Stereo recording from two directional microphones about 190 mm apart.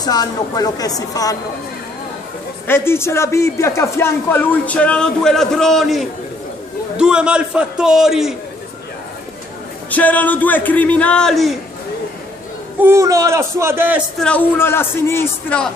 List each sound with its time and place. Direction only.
0.0 s a woman's voice: 20° left (ahead or behind)
2.6 s a man's voice: 10° left (ahead or behind)
9.8 s speech: 10° left (ahead or behind)
12.8 s speech: 15° right (ahead or behind)
14.2 s speech: 10° left (ahead or behind)